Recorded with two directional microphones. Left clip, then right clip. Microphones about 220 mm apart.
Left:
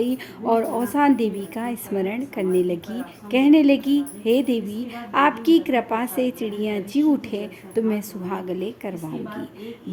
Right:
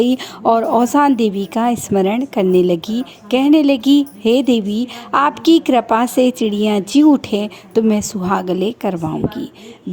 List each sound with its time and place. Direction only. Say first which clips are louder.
0.0 s speech: right 9 dB; 35° right (ahead or behind)